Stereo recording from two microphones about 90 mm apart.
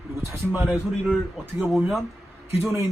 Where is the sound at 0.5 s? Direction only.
15° right (ahead or behind).